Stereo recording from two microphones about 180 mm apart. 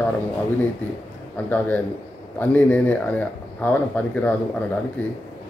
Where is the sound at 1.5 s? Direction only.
10° left (ahead or behind).